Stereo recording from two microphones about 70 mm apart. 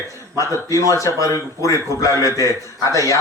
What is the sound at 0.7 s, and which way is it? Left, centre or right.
A man's voice, left.